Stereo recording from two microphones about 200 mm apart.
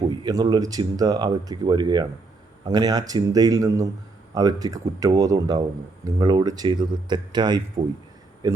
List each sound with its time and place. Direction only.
0.1 s speech: 20° right (ahead or behind)